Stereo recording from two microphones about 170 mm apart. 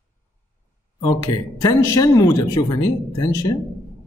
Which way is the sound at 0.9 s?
20° left (ahead or behind).